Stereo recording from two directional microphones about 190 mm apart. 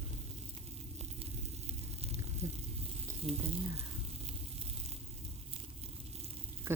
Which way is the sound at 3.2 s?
30° right (ahead or behind).